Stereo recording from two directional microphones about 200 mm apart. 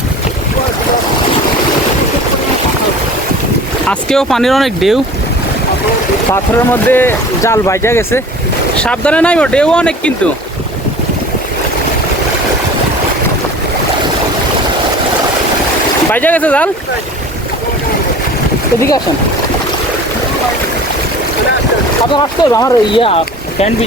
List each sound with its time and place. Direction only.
3.8 s speech: 5° left (ahead or behind)
6.3 s speech: 10° left (ahead or behind)
16.1 s speech: 10° left (ahead or behind)
22.1 s speech: 20° left (ahead or behind)
23.0 s speech: 30° left (ahead or behind)